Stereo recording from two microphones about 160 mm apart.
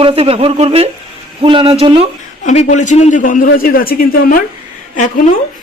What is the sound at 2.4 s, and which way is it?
A man's voice, 50° left (ahead or behind).